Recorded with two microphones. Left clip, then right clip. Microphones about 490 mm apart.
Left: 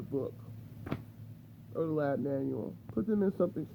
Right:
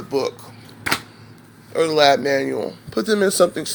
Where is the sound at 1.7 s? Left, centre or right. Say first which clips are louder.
Right 18 dB; centre.